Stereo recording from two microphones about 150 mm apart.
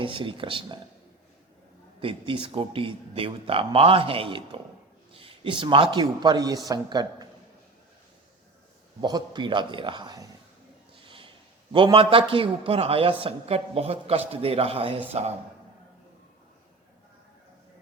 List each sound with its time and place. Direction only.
0.0 s a man's voice: 35° right (ahead or behind)
2.0 s a man's voice: 35° right (ahead or behind)
9.0 s a man's voice: 30° right (ahead or behind)
10.9 s a sound: 35° right (ahead or behind)
11.7 s a man's voice: 35° right (ahead or behind)